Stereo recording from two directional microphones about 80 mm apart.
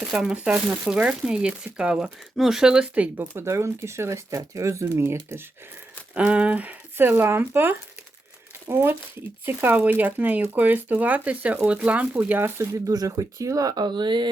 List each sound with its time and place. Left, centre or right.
0.0 s speech: centre
3.3 s speech: right
6.1 s speech: centre
12.4 s speech: right